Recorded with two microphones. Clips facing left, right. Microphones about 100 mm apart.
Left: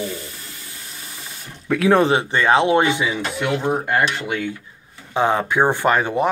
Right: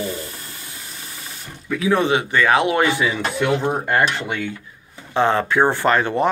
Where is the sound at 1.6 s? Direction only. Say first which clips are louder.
Left 4 dB; 65° left (ahead or behind).